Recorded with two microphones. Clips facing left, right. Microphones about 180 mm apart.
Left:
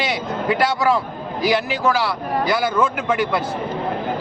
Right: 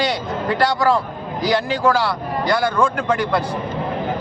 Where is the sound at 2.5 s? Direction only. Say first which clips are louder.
Right 2 dB; 5° left (ahead or behind).